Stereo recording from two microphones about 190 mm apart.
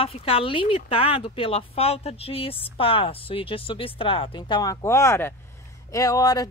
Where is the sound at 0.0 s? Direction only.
30° left (ahead or behind).